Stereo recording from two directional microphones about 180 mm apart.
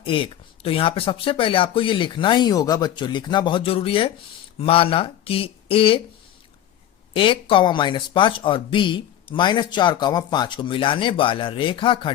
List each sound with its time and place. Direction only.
0.0 s speech: 30° left (ahead or behind)
7.1 s speech: 30° left (ahead or behind)